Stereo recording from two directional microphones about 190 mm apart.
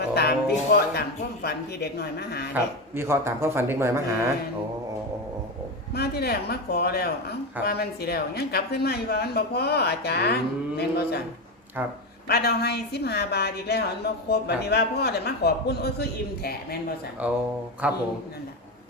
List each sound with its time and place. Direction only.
0.1 s speech: 60° left (ahead or behind)
2.9 s a man's voice: 15° right (ahead or behind)
5.9 s a woman's voice: 55° left (ahead or behind)
12.3 s a woman's voice: 55° left (ahead or behind)
17.2 s a man's voice: 10° right (ahead or behind)